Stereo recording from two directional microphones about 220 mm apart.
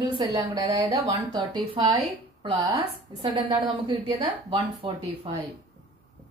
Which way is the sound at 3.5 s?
20° right (ahead or behind).